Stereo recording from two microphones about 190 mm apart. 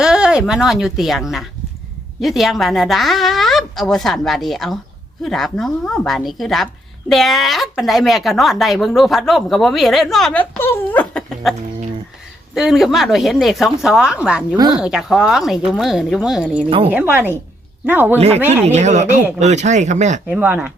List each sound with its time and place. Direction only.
0.0 s speech: 5° right (ahead or behind)
12.5 s speech: centre (ahead or behind)
16.6 s speech: 30° right (ahead or behind)
16.9 s speech: 10° right (ahead or behind)
18.6 s speech: 35° right (ahead or behind)
20.3 s speech: 10° right (ahead or behind)